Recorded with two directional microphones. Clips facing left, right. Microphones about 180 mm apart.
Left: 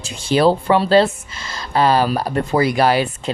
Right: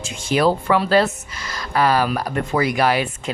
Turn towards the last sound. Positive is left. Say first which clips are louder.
# left 3 dB
turn(degrees=30)  # may be behind; listen again after turning